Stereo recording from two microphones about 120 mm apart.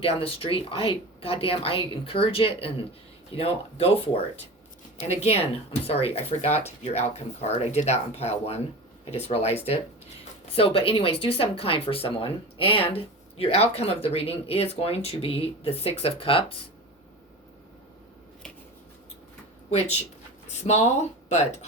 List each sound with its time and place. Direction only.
0.0 s speech: 50° left (ahead or behind)
10.5 s speech: 50° left (ahead or behind)
20.7 s speech: 70° left (ahead or behind)